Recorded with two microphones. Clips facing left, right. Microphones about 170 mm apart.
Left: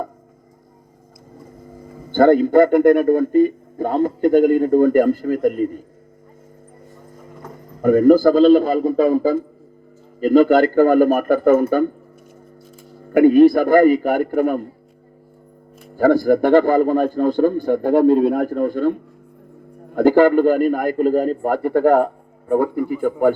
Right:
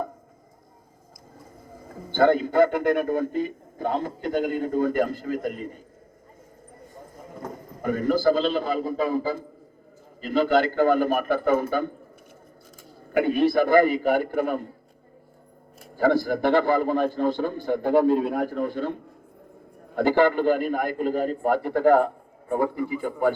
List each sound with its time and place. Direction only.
2.1 s a man's voice: 50° left (ahead or behind)
7.8 s a man's voice: 45° left (ahead or behind)
13.1 s a man's voice: 45° left (ahead or behind)
16.0 s a man's voice: 45° left (ahead or behind)
20.0 s a man's voice: 45° left (ahead or behind)